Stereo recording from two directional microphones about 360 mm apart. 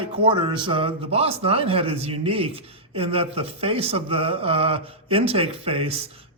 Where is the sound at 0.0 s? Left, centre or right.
Centre.